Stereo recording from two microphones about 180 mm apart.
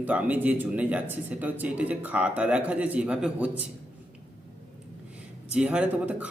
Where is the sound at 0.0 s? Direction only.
10° right (ahead or behind).